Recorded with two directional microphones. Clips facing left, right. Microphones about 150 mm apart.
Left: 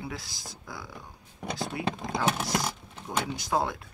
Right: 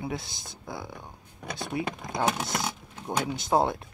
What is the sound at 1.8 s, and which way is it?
Speech, 25° left (ahead or behind).